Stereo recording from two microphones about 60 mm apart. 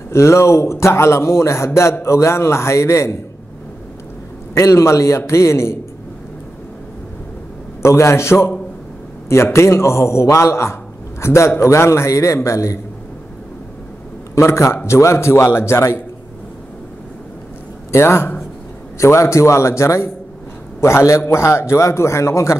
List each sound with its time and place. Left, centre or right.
0.1 s a man's voice: left
4.6 s a man's voice: left
7.8 s a man's voice: left
14.3 s a man's voice: left
17.9 s a man's voice: left